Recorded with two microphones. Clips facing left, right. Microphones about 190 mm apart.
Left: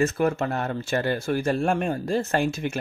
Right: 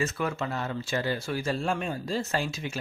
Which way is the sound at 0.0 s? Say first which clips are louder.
Left 7 dB; 50° left (ahead or behind).